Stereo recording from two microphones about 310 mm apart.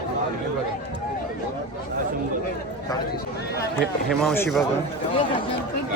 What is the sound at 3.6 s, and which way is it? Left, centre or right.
Speech, centre.